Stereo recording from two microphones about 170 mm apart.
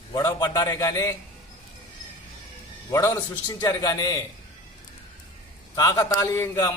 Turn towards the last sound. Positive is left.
turn(degrees=15)  # may be behind; listen again after turning